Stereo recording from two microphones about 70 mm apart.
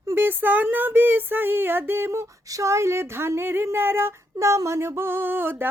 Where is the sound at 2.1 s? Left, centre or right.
Right.